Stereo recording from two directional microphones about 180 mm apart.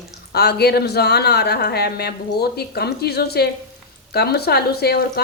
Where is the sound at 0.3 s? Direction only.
60° left (ahead or behind).